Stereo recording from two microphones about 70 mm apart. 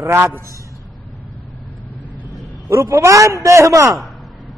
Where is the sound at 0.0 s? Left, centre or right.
Right.